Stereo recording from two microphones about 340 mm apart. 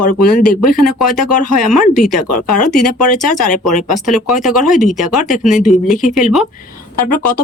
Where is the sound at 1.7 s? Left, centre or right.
Centre.